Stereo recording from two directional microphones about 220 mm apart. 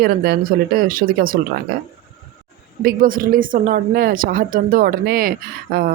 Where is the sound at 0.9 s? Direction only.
40° right (ahead or behind).